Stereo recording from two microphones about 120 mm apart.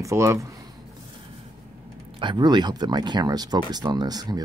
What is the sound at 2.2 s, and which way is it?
Speech, 40° right (ahead or behind).